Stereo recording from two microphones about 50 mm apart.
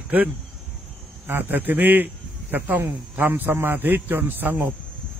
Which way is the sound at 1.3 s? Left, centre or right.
Right.